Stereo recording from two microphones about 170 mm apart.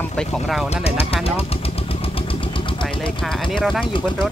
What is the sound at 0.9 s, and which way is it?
Speech, 35° left (ahead or behind).